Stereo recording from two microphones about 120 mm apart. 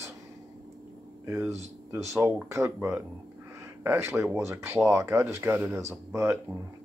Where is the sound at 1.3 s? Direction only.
20° right (ahead or behind).